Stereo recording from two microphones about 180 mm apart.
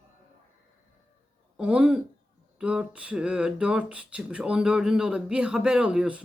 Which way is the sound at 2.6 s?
5° right (ahead or behind).